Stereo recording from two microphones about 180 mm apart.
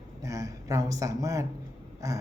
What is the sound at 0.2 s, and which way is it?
Speech, 20° right (ahead or behind).